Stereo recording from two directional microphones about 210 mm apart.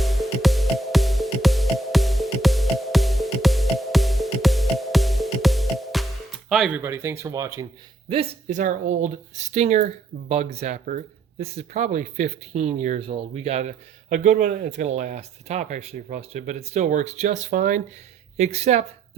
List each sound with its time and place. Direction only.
0.0 s music: centre (ahead or behind)
6.5 s speech: 5° right (ahead or behind)
8.1 s speech: 30° right (ahead or behind)